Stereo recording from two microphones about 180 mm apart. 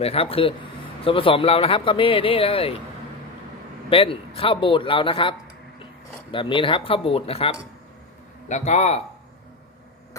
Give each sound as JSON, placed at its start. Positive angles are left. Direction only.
{"t": 0.0, "sound": "speech", "side_deg": 35}
{"t": 3.8, "sound": "a man's voice", "side_deg": 30}
{"t": 6.3, "sound": "speech", "side_deg": 30}